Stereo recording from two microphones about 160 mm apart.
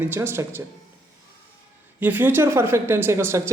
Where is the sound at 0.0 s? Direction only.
15° right (ahead or behind).